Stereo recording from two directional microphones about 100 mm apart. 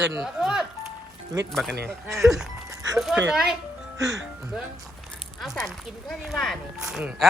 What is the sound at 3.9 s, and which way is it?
Speech, 35° right (ahead or behind).